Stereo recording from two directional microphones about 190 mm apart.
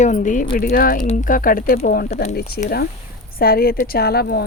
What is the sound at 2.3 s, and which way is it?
A woman's voice, 55° left (ahead or behind).